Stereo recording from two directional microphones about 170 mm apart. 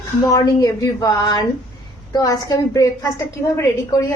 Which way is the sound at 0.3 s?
20° left (ahead or behind).